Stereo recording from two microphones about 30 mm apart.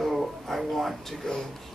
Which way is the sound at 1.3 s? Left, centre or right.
Left.